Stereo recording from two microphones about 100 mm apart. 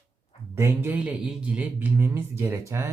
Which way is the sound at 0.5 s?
30° right (ahead or behind).